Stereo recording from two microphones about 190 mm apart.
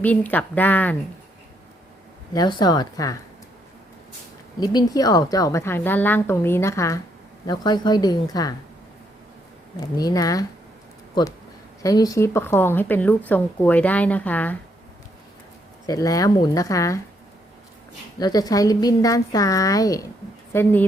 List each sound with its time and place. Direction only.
0.0 s speech: 10° left (ahead or behind)
2.3 s a woman's voice: 20° left (ahead or behind)
4.6 s a woman's voice: 20° left (ahead or behind)
9.7 s a woman's voice: 20° left (ahead or behind)
15.9 s speech: 20° left (ahead or behind)
18.2 s a woman's voice: 20° left (ahead or behind)